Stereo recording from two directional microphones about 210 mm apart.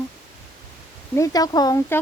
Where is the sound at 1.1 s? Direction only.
15° left (ahead or behind).